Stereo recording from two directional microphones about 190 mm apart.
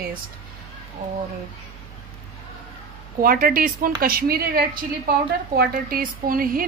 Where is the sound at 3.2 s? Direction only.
50° right (ahead or behind).